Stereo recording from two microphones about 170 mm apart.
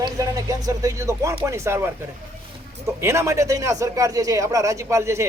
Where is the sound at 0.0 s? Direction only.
20° right (ahead or behind).